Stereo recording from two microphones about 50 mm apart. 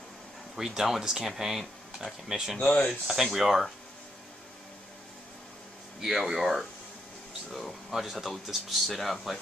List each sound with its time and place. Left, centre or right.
0.6 s speech: centre
2.6 s speech: left
3.1 s speech: centre
6.0 s speech: centre